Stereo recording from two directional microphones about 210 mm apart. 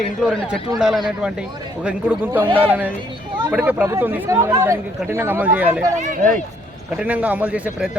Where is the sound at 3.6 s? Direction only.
10° right (ahead or behind).